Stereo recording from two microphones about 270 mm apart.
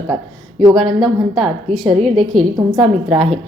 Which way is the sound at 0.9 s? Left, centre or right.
Centre.